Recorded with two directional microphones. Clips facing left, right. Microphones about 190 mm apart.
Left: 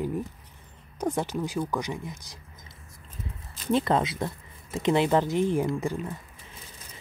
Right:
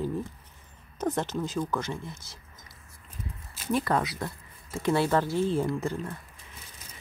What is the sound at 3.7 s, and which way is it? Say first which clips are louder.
Speech: left 3 dB; 25° left (ahead or behind).